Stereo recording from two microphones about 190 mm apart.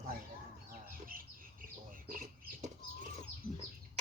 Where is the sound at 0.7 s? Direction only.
50° right (ahead or behind).